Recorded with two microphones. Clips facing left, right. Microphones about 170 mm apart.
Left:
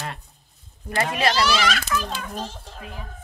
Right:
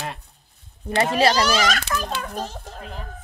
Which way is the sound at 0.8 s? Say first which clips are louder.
Right 4 dB; 30° right (ahead or behind).